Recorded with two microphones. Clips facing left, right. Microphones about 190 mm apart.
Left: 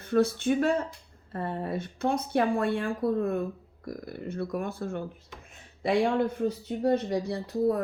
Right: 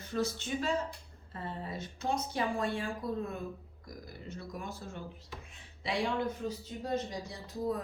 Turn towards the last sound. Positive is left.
turn(degrees=60)  # may be behind; listen again after turning